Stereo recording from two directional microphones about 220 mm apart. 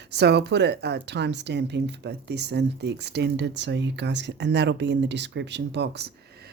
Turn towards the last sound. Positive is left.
turn(degrees=-50)  # may be behind; listen again after turning